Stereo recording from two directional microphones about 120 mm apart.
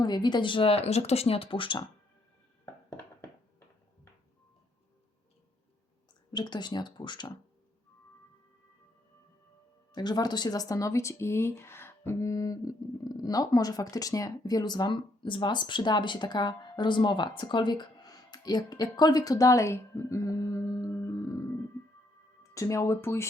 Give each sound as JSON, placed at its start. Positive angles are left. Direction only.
{"t": 0.0, "sound": "speech", "side_deg": 35}
{"t": 6.3, "sound": "speech", "side_deg": 40}
{"t": 9.9, "sound": "speech", "side_deg": 35}
{"t": 22.5, "sound": "speech", "side_deg": 25}